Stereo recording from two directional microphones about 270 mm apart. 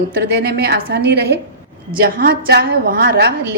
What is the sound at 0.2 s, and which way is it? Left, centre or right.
A woman's voice, right.